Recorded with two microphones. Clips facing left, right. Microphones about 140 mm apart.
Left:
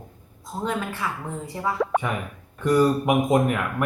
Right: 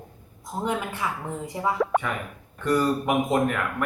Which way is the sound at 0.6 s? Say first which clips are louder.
Even; 20° right (ahead or behind).